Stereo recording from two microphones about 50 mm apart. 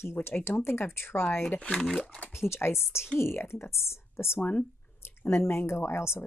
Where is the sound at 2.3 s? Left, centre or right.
Left.